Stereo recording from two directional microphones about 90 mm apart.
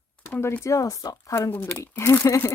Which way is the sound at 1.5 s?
20° left (ahead or behind).